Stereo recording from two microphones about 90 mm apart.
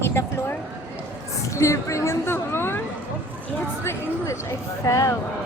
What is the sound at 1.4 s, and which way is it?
A woman's voice, 35° left (ahead or behind).